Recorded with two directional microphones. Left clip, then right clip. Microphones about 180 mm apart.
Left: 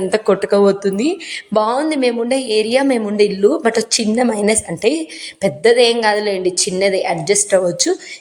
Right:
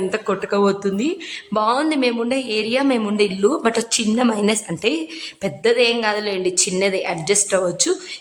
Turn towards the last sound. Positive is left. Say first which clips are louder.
# left 4 dB
turn(degrees=10)  # may be behind; listen again after turning